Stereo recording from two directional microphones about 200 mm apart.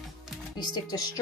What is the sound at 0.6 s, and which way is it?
Speech, 20° left (ahead or behind).